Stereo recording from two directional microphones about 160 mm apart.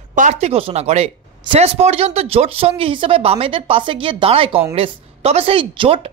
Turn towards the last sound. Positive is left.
turn(degrees=-35)  # may be behind; listen again after turning